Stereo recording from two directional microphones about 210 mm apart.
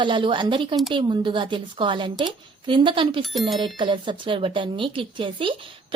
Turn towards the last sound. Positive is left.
turn(degrees=-25)  # may be behind; listen again after turning